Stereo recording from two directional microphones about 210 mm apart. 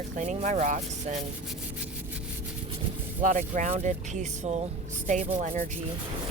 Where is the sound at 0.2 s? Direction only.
35° right (ahead or behind).